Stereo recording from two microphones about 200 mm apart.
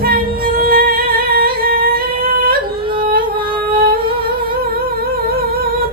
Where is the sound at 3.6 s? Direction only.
50° right (ahead or behind).